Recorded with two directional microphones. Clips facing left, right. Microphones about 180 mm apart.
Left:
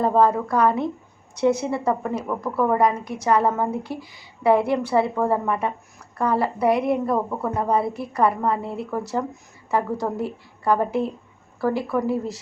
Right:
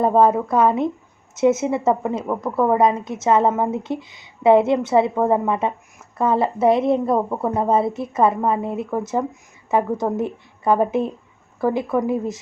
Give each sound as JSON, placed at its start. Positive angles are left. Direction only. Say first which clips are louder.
{"t": 0.0, "sound": "a woman's voice", "louder": "right 3 dB", "side_deg": -20}